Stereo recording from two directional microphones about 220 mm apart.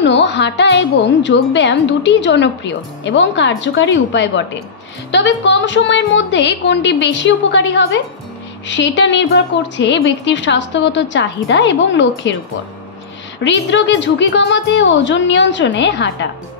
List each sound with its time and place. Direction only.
0.0 s a woman's voice: 55° left (ahead or behind)
13.4 s a woman's voice: 55° left (ahead or behind)